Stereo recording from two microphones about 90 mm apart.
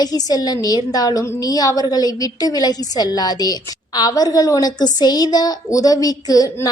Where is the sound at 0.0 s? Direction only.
45° left (ahead or behind).